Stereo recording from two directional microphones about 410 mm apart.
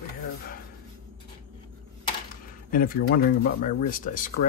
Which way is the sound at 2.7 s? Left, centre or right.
Left.